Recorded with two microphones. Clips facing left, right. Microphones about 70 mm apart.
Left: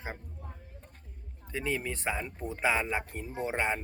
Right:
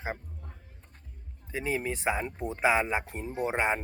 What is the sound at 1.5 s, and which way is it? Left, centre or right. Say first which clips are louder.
Speech: right 2 dB; centre.